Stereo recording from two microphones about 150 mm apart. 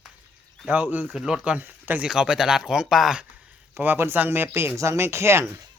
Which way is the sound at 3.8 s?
15° right (ahead or behind).